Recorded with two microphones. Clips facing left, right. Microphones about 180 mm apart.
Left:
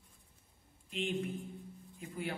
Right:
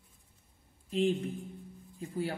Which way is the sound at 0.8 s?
35° right (ahead or behind).